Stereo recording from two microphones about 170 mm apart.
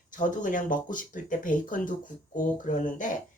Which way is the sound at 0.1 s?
50° left (ahead or behind).